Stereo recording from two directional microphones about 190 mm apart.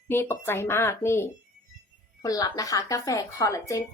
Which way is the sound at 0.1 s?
10° left (ahead or behind).